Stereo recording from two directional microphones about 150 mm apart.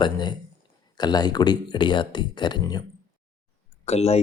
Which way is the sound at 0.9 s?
25° left (ahead or behind).